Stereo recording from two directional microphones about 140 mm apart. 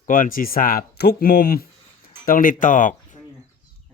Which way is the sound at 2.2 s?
80° left.